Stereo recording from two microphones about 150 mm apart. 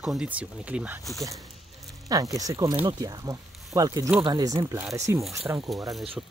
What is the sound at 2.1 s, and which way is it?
Speech, 25° right (ahead or behind).